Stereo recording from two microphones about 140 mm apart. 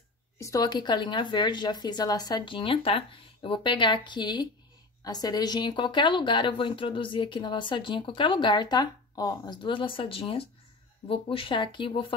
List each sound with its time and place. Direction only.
0.4 s a woman's voice: 25° left (ahead or behind)